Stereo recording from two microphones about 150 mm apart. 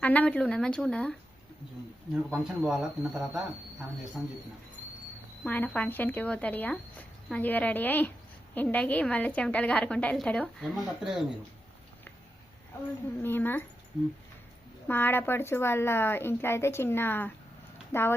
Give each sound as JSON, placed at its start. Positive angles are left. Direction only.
{"t": 0.0, "sound": "speech", "side_deg": 10}
{"t": 2.3, "sound": "speech", "side_deg": -5}
{"t": 5.4, "sound": "speech", "side_deg": 10}
{"t": 13.2, "sound": "speech", "side_deg": 15}
{"t": 14.8, "sound": "speech", "side_deg": 15}